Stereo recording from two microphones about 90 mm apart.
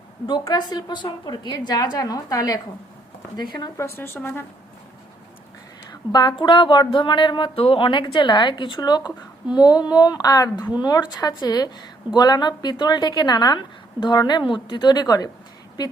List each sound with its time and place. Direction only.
0.3 s a woman's voice: 55° left (ahead or behind)
3.8 s speech: 30° left (ahead or behind)
5.9 s speech: 55° left (ahead or behind)
8.8 s a woman's voice: 50° left (ahead or behind)